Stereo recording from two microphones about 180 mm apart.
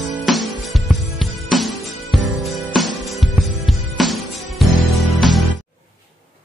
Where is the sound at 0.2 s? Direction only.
Centre (ahead or behind).